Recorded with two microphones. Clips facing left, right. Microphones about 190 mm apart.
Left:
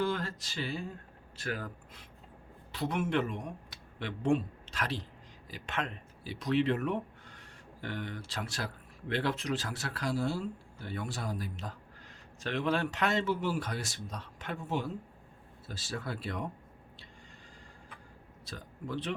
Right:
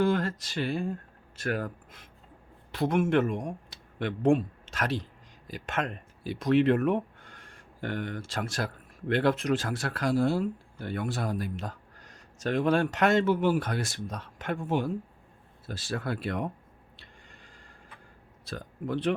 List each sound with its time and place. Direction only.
0.0 s a sound: 50° right (ahead or behind)
1.4 s speech: 55° right (ahead or behind)
2.7 s speech: 50° right (ahead or behind)
18.4 s a man's voice: 55° right (ahead or behind)